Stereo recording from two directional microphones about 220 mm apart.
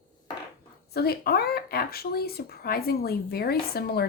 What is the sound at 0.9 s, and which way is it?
Speech, 45° left (ahead or behind).